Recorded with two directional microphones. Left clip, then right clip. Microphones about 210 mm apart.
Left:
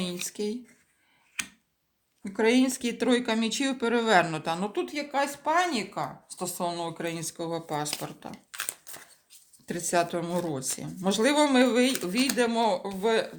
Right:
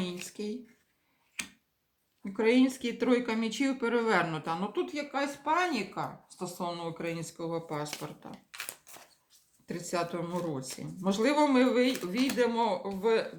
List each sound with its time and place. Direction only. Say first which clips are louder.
0.3 s speech: left 6 dB; 40° left (ahead or behind)
1.4 s tick-tock: left 5 dB; 10° left (ahead or behind)
2.2 s speech: left 2 dB; 40° left (ahead or behind)
9.6 s speech: left 7 dB; 50° left (ahead or behind)